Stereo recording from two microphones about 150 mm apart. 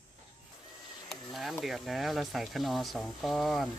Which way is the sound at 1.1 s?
Centre (ahead or behind).